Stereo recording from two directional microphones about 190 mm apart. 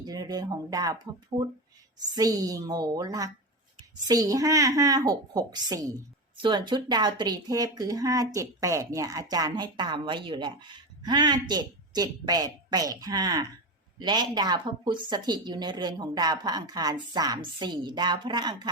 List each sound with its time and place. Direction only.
0.0 s a woman's voice: 20° right (ahead or behind)